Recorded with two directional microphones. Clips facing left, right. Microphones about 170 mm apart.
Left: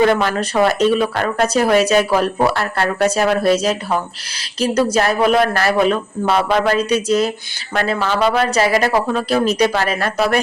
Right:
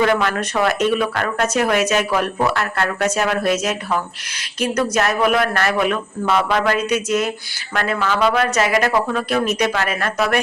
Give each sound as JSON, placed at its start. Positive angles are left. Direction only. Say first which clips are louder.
{"t": 0.0, "sound": "speech", "louder": "left 3 dB", "side_deg": 35}